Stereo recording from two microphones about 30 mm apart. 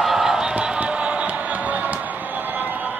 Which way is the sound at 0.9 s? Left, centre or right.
Right.